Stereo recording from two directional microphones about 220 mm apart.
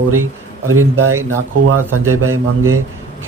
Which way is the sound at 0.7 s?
80° right.